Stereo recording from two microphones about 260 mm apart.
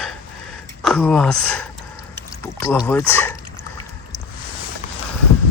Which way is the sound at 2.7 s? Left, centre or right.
Centre.